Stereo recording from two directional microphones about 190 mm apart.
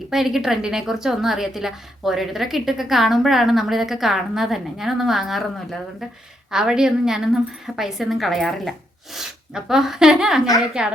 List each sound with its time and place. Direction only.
0.1 s a woman's voice: centre (ahead or behind)